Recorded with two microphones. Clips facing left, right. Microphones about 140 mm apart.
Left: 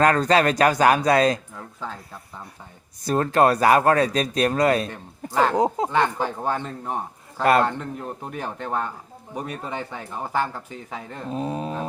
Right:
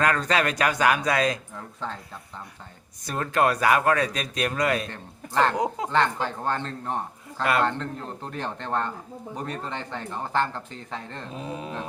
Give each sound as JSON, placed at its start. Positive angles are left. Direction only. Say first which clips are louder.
{"t": 0.0, "sound": "speech", "louder": "left 5 dB", "side_deg": 35}
{"t": 1.5, "sound": "speech", "louder": "even", "side_deg": 5}
{"t": 3.0, "sound": "speech", "louder": "left 5 dB", "side_deg": 35}
{"t": 4.9, "sound": "speech", "louder": "left 4 dB", "side_deg": 10}
{"t": 5.5, "sound": "speech", "louder": "left 5 dB", "side_deg": 30}
{"t": 5.9, "sound": "speech", "louder": "left 2 dB", "side_deg": 10}
{"t": 11.3, "sound": "speech", "louder": "left 8 dB", "side_deg": 40}